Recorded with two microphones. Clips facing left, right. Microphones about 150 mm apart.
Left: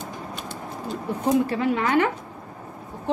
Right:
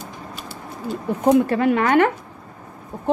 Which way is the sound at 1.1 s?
55° right (ahead or behind).